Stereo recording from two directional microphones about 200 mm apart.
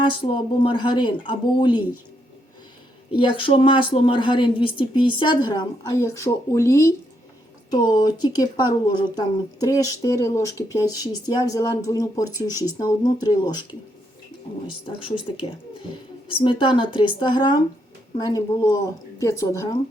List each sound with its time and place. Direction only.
0.0 s a woman's voice: 25° left (ahead or behind)
3.2 s a woman's voice: 25° left (ahead or behind)
12.5 s speech: 15° right (ahead or behind)
12.8 s a woman's voice: 20° left (ahead or behind)
14.8 s a woman's voice: 25° left (ahead or behind)